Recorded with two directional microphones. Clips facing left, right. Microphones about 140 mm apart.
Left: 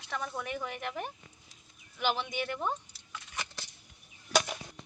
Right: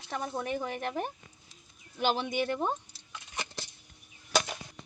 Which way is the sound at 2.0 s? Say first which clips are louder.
Right 3 dB; 35° right (ahead or behind).